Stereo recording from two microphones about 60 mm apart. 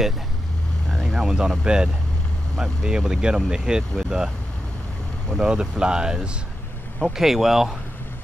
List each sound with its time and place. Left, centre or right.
1.1 s speech: centre
5.4 s speech: centre